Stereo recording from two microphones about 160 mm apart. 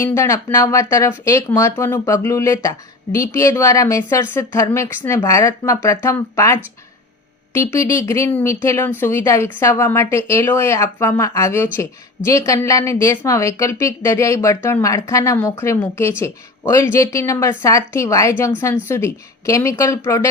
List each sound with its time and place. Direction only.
0.0 s a woman's voice: 20° left (ahead or behind)